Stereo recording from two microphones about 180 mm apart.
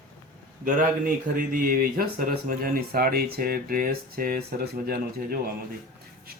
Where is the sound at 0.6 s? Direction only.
50° right (ahead or behind).